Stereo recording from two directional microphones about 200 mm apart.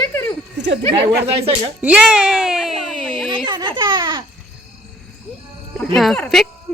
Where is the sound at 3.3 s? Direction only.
20° right (ahead or behind).